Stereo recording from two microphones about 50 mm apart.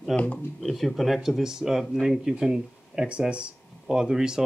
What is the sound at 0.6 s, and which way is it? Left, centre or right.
Speech, centre.